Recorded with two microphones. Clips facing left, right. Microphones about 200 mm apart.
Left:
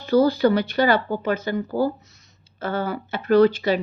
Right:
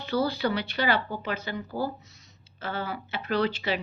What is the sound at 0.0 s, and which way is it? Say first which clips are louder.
Speech: left 9 dB; 40° left (ahead or behind).